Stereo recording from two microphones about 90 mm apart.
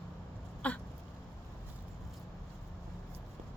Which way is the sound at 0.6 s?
15° left (ahead or behind).